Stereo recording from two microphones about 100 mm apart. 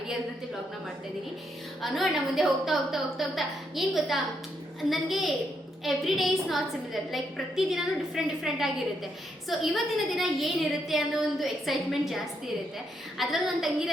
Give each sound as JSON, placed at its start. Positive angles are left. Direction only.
{"t": 1.8, "sound": "a woman's voice", "side_deg": 0}